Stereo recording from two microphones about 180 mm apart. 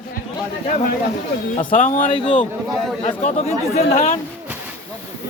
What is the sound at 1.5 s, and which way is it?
Speech, 45° left (ahead or behind).